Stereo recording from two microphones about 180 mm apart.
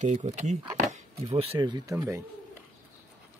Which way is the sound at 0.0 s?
40° right (ahead or behind).